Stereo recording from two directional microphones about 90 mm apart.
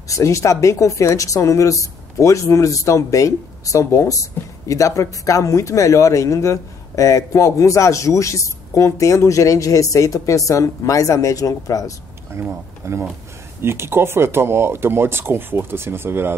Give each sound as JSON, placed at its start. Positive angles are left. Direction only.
{"t": 0.1, "sound": "a woman's voice", "side_deg": 35}
{"t": 12.4, "sound": "speech", "side_deg": -30}